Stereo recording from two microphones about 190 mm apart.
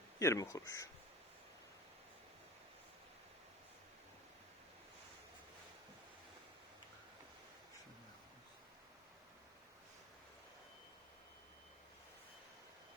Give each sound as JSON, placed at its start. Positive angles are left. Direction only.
{"t": 0.2, "sound": "speech", "side_deg": 15}